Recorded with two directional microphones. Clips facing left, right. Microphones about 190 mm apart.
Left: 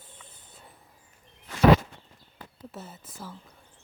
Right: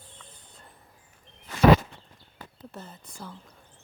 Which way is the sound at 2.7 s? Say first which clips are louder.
Left 1 dB; 5° left (ahead or behind).